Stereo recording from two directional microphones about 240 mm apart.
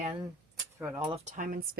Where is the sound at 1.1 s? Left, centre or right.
Right.